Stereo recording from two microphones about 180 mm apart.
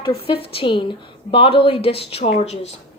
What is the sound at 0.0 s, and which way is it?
A woman's voice, 30° left (ahead or behind).